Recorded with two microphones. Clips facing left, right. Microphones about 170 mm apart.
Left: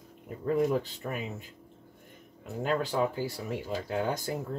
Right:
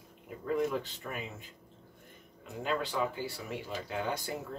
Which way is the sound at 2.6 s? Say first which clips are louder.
Left 4 dB; 45° left (ahead or behind).